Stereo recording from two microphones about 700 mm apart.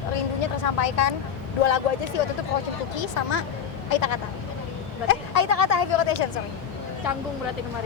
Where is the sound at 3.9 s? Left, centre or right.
Left.